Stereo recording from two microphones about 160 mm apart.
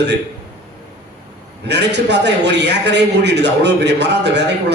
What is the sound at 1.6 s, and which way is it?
A man's voice, 90° right.